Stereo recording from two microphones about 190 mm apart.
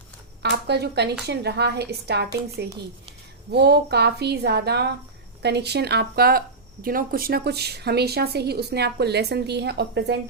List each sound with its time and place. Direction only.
0.7 s a woman's voice: 60° right (ahead or behind)